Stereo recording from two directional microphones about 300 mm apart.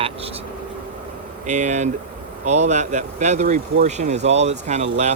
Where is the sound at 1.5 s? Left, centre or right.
Right.